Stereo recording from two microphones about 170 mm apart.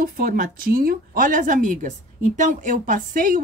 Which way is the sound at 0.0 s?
55° right (ahead or behind).